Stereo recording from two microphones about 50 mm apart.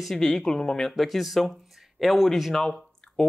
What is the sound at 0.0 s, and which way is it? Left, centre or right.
Speech, centre.